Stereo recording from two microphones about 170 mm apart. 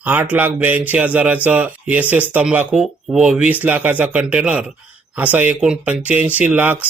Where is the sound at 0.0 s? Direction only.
10° right (ahead or behind).